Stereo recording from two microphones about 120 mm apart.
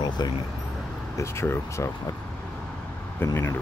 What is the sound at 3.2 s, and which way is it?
Speech, 20° left (ahead or behind).